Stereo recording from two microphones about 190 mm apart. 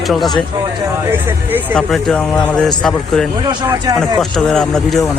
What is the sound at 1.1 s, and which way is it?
Speech, 10° right (ahead or behind).